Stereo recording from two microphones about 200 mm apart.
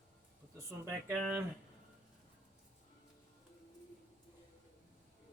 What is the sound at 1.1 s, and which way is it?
Speech, 5° left (ahead or behind).